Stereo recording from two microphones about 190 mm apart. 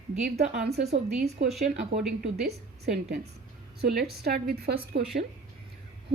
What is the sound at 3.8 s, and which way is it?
A woman's voice, 55° right (ahead or behind).